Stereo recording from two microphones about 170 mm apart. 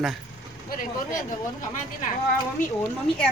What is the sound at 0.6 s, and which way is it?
Vehicle, 50° left (ahead or behind).